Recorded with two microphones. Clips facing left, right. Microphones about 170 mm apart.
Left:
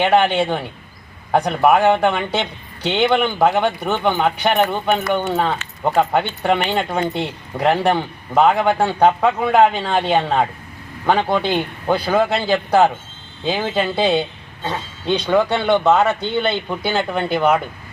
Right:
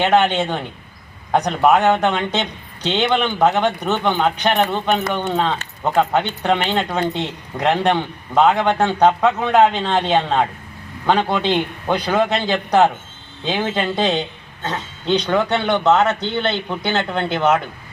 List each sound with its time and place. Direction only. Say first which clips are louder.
0.0 s a man's voice: left 1 dB; 10° left (ahead or behind)